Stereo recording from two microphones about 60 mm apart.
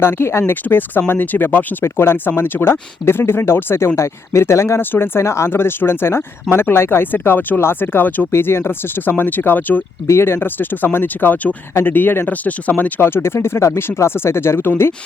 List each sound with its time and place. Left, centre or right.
0.0 s speech: left
0.5 s speech: left
4.8 s speech: left
8.3 s speech: left
10.1 s speech: left
13.0 s speech: left